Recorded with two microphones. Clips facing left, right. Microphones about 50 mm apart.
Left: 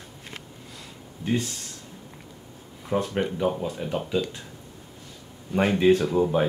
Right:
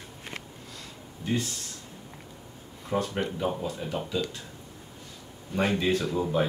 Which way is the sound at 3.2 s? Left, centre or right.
Centre.